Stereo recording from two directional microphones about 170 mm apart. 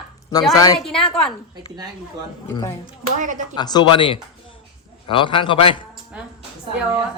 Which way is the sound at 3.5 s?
25° left (ahead or behind).